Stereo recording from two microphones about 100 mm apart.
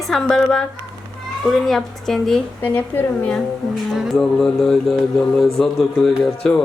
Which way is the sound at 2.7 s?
15° left (ahead or behind).